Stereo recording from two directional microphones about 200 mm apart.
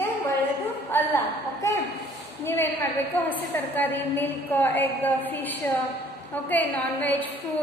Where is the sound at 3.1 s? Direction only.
10° left (ahead or behind).